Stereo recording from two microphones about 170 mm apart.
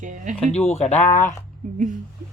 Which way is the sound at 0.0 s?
50° right (ahead or behind).